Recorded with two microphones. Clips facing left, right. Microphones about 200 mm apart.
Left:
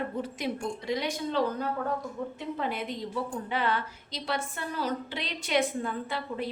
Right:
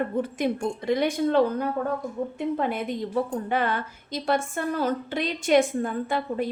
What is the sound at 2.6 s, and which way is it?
A woman's voice, 50° right (ahead or behind).